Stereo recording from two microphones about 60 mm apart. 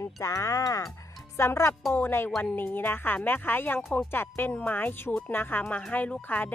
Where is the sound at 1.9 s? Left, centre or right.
Left.